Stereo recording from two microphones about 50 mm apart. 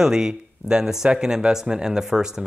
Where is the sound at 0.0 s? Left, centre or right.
Centre.